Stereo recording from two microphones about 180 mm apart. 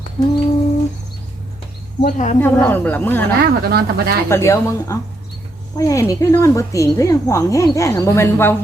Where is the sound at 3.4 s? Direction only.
60° right (ahead or behind).